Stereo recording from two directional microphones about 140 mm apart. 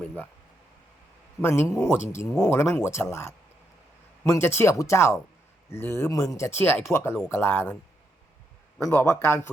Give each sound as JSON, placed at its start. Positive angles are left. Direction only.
{"t": 1.4, "sound": "speech", "side_deg": 20}
{"t": 8.8, "sound": "speech", "side_deg": 15}